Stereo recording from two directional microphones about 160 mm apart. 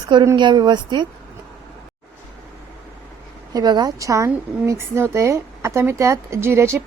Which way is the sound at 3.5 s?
25° right (ahead or behind).